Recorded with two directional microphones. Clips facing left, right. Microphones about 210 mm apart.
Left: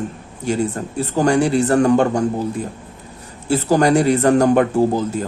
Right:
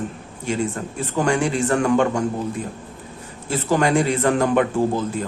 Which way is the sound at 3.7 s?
40° left (ahead or behind).